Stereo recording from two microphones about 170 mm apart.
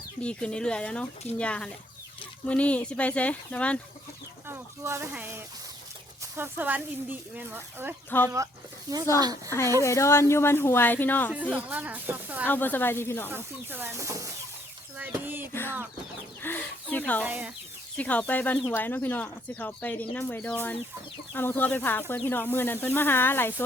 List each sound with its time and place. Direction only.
0.2 s speech: 5° left (ahead or behind)
4.4 s speech: 15° right (ahead or behind)
9.5 s speech: 15° left (ahead or behind)
11.3 s speech: 10° right (ahead or behind)
12.5 s speech: 10° left (ahead or behind)
13.3 s speech: 10° right (ahead or behind)
16.4 s speech: 10° left (ahead or behind)
17.2 s speech: 10° right (ahead or behind)
17.9 s speech: 10° left (ahead or behind)